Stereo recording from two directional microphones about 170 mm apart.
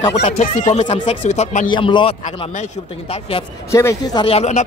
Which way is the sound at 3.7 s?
20° left (ahead or behind).